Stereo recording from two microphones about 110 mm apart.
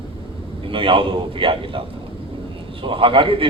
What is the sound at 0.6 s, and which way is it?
A man's voice, 50° right (ahead or behind).